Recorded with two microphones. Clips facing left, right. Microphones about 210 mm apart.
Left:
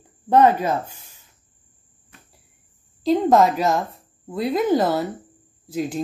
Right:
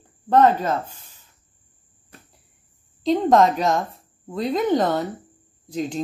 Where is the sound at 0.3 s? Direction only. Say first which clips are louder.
Left 1 dB; 10° left (ahead or behind).